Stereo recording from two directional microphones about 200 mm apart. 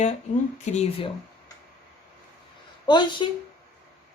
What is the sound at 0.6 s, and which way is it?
Speech, 35° left (ahead or behind).